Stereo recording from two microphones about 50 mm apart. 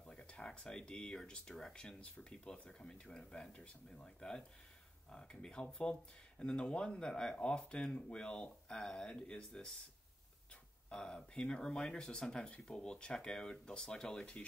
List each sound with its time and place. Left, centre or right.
0.0 s speech: centre
10.9 s speech: centre